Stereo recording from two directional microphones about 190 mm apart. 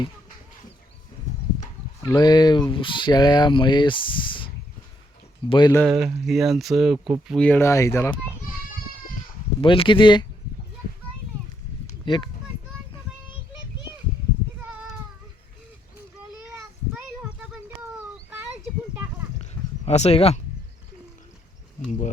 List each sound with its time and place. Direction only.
2.0 s speech: 20° left (ahead or behind)
5.7 s speech: centre (ahead or behind)
9.6 s speech: 25° left (ahead or behind)
12.0 s a child's voice: 25° left (ahead or behind)
16.9 s a sound: 5° right (ahead or behind)
19.4 s a sound: 35° left (ahead or behind)